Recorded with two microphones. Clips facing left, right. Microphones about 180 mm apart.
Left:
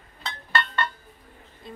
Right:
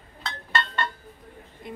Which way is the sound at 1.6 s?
20° right (ahead or behind).